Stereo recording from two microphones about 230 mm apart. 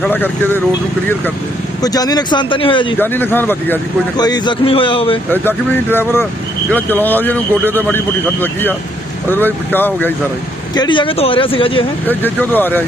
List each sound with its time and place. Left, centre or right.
0.0 s speech: centre
1.8 s speech: centre
3.0 s speech: centre
5.3 s speech: centre
10.8 s speech: left
12.1 s speech: centre